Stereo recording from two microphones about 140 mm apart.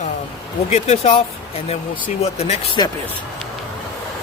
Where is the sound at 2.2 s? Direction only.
50° left (ahead or behind).